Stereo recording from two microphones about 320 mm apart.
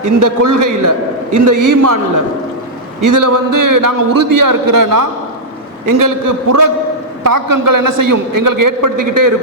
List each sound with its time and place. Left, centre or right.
0.0 s a man's voice: right
3.0 s a man's voice: right
7.3 s a man's voice: right